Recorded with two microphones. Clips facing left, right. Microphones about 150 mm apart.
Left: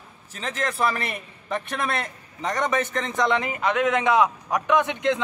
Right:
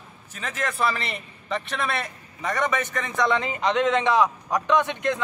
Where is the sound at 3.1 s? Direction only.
20° left (ahead or behind).